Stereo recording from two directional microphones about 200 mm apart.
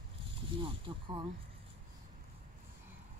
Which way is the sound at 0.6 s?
25° right (ahead or behind).